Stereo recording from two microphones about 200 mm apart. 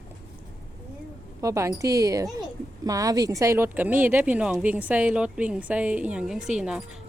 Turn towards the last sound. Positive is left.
turn(degrees=-5)  # may be behind; listen again after turning